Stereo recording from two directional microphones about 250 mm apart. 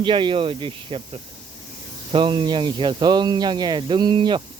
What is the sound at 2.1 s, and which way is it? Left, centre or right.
Speech, centre.